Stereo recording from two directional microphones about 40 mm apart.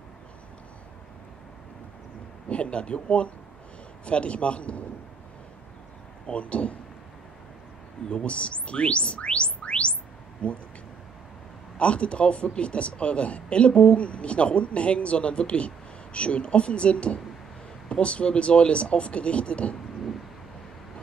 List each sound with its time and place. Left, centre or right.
2.5 s a man's voice: left
6.2 s speech: left
8.1 s speech: left
11.8 s speech: left